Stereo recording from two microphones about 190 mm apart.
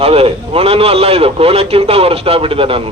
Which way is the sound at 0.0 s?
30° right (ahead or behind).